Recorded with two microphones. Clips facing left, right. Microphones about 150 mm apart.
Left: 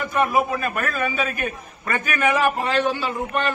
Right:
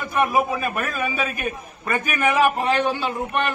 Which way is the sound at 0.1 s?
10° right (ahead or behind).